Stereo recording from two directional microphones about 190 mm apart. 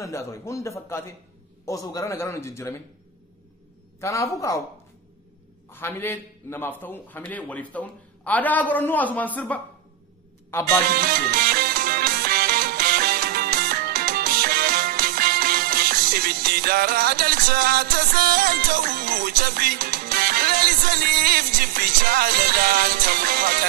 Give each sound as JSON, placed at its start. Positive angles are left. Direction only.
{"t": 0.0, "sound": "a man's voice", "side_deg": 15}
{"t": 4.0, "sound": "a man's voice", "side_deg": 15}
{"t": 5.7, "sound": "a man's voice", "side_deg": 10}
{"t": 11.0, "sound": "music", "side_deg": -50}